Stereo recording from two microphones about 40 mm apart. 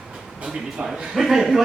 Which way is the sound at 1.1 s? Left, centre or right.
Centre.